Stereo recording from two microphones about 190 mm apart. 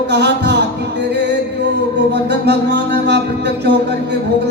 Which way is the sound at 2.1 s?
60° right (ahead or behind).